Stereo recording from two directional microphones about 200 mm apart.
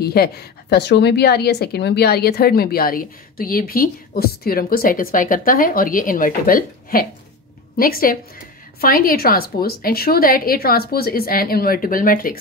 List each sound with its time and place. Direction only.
0.0 s a woman's voice: 50° left (ahead or behind)